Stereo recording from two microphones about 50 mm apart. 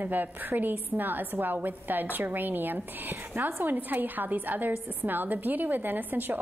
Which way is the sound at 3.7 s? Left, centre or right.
Right.